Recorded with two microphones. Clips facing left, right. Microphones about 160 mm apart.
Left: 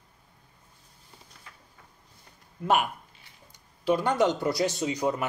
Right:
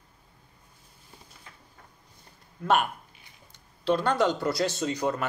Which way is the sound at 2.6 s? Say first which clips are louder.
Even; 10° left (ahead or behind).